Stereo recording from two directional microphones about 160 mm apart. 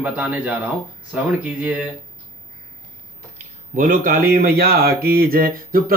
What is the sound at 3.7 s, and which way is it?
Speech, 55° right (ahead or behind).